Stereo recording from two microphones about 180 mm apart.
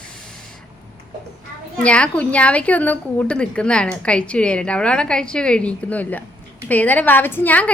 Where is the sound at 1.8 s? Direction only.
5° left (ahead or behind).